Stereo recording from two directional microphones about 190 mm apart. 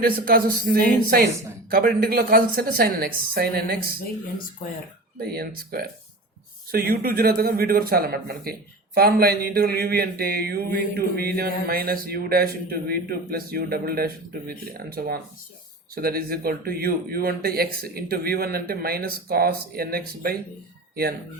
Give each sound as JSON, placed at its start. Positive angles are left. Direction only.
{"t": 0.0, "sound": "mantra", "side_deg": -50}
{"t": 5.2, "sound": "mantra", "side_deg": -55}
{"t": 20.9, "sound": "speech", "side_deg": -55}